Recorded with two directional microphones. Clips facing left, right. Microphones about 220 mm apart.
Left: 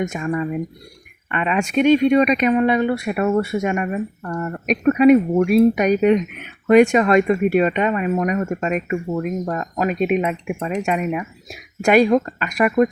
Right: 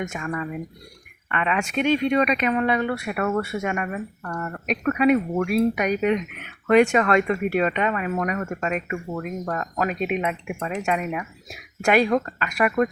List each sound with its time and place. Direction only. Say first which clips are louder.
0.1 s speech: left 6 dB; 25° left (ahead or behind)